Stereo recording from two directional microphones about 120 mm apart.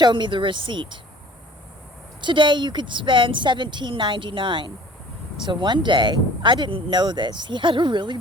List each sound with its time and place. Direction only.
0.0 s speech: 40° right (ahead or behind)
2.2 s speech: 40° right (ahead or behind)